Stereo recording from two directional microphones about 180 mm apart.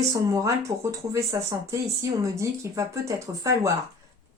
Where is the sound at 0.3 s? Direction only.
20° right (ahead or behind).